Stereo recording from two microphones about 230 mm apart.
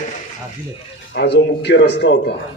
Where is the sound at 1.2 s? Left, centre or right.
Left.